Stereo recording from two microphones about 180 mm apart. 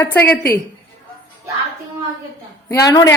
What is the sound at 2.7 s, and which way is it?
Speech, 20° left (ahead or behind).